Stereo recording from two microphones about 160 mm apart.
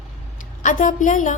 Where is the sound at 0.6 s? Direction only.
55° left (ahead or behind).